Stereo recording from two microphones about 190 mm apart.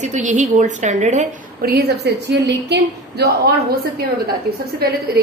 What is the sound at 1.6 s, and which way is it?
A woman's voice, 55° right (ahead or behind).